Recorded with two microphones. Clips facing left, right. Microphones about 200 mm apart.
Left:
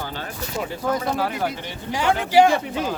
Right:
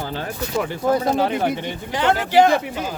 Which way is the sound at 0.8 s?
30° right (ahead or behind).